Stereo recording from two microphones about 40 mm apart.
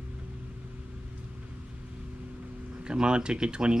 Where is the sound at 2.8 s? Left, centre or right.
Right.